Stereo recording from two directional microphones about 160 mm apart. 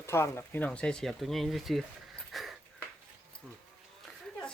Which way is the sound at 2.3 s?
Centre (ahead or behind).